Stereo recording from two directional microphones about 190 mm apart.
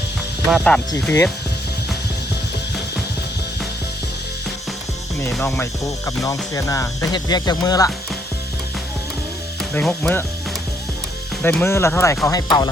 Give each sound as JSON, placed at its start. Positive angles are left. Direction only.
{"t": 0.4, "sound": "speech", "side_deg": 0}
{"t": 5.4, "sound": "speech", "side_deg": 10}
{"t": 9.7, "sound": "speech", "side_deg": 10}
{"t": 11.4, "sound": "speech", "side_deg": 10}